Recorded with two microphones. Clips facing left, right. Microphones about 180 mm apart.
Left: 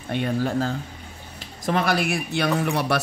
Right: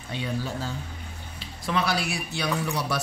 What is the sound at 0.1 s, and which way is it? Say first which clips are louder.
Speech: left 7 dB; 55° left (ahead or behind).